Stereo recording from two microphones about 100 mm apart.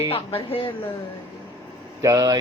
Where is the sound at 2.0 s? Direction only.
30° right (ahead or behind).